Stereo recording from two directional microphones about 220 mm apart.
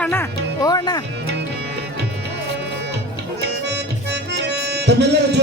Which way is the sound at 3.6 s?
50° right (ahead or behind).